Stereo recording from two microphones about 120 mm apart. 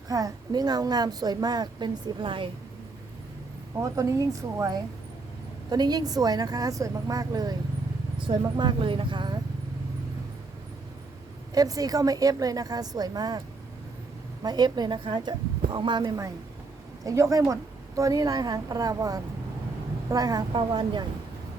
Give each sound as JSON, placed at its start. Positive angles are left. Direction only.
{"t": 0.1, "sound": "a woman's voice", "side_deg": -30}
{"t": 3.8, "sound": "a woman's voice", "side_deg": -25}
{"t": 11.5, "sound": "a woman's voice", "side_deg": -30}
{"t": 14.4, "sound": "a woman's voice", "side_deg": -35}